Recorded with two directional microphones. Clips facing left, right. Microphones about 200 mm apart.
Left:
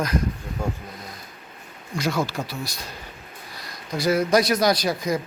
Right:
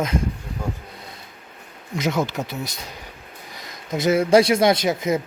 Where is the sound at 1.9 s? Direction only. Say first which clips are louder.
Right 2 dB; 20° right (ahead or behind).